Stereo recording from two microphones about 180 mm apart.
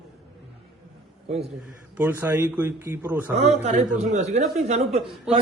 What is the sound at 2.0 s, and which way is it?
A man's voice, 10° right (ahead or behind).